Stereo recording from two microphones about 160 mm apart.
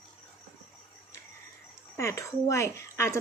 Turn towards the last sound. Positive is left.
turn(degrees=15)  # may be behind; listen again after turning